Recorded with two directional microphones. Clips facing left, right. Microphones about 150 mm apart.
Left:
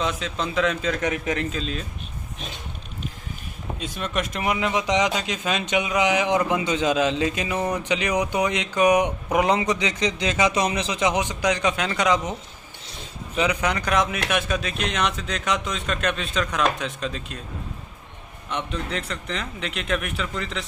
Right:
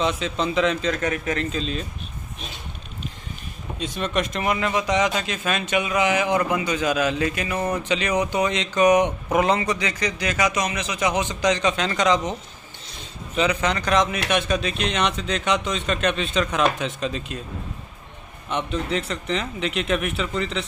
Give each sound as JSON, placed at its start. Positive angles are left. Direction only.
{"t": 0.0, "sound": "speech", "side_deg": 0}
{"t": 1.5, "sound": "speech", "side_deg": 0}
{"t": 3.8, "sound": "speech", "side_deg": 5}
{"t": 13.4, "sound": "speech", "side_deg": 10}
{"t": 18.5, "sound": "speech", "side_deg": -5}